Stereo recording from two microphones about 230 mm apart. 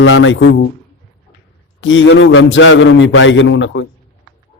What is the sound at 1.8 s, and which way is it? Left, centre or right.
A man's voice, left.